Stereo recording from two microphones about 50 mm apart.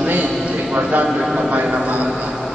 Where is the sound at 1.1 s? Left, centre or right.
Centre.